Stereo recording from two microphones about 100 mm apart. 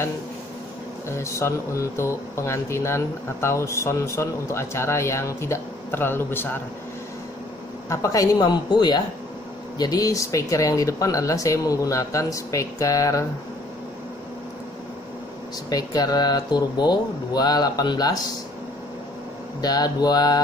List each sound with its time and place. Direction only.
1.0 s speech: 30° left (ahead or behind)
7.9 s a woman's voice: 35° left (ahead or behind)
15.7 s speech: 40° left (ahead or behind)
19.6 s speech: 40° left (ahead or behind)